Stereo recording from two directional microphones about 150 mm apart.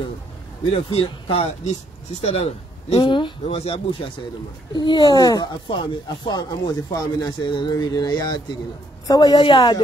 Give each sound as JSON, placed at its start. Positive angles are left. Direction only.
{"t": 0.8, "sound": "speech", "side_deg": 35}
{"t": 4.7, "sound": "speech", "side_deg": 25}